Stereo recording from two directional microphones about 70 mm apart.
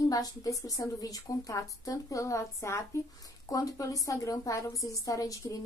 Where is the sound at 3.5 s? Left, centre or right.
Left.